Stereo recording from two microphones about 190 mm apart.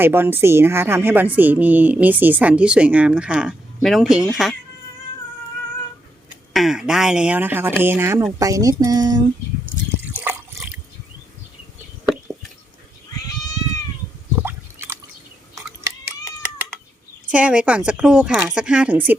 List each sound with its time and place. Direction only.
0.0 s a woman's voice: 10° right (ahead or behind)
6.5 s a woman's voice: centre (ahead or behind); by 9.2 s 20° right (ahead or behind)
10.1 s water: 10° right (ahead or behind)
13.2 s cat: 20° left (ahead or behind)
14.4 s a sound: 15° right (ahead or behind)
17.3 s a woman's voice: 5° right (ahead or behind)